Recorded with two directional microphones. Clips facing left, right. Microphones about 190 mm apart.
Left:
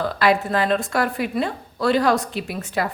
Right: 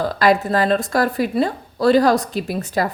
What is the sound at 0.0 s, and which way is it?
A woman's voice, 40° right (ahead or behind).